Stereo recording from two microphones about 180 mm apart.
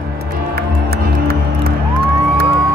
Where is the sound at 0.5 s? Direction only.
60° right (ahead or behind).